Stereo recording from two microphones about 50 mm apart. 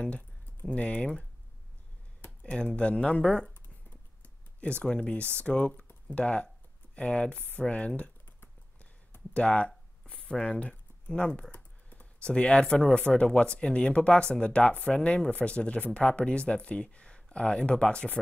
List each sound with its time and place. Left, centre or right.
0.7 s speech: left
2.5 s speech: left
3.6 s computer keyboard: left
6.1 s speech: left
9.3 s a sound: left
11.5 s computer keyboard: left
12.2 s speech: left